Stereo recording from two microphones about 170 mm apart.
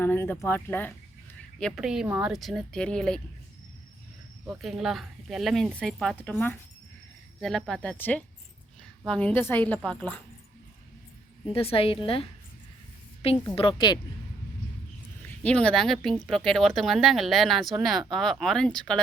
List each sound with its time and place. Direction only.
0.0 s speech: 10° left (ahead or behind)
4.4 s a woman's voice: centre (ahead or behind)
11.5 s a woman's voice: 35° left (ahead or behind)
13.6 s speech: 30° left (ahead or behind)
15.4 s speech: 5° left (ahead or behind)